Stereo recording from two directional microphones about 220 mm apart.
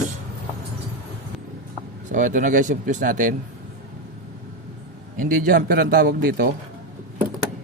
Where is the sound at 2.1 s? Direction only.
35° right (ahead or behind).